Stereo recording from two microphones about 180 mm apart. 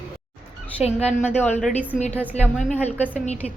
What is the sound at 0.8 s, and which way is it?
A woman's voice, 5° right (ahead or behind).